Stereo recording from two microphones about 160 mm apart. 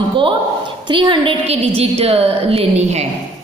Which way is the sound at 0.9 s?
30° right (ahead or behind).